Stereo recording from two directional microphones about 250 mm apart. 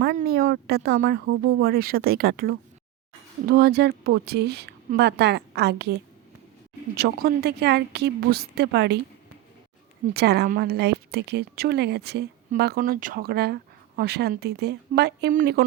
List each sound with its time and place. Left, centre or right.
0.0 s a woman's voice: right
6.9 s a woman's voice: right
10.2 s a woman's voice: right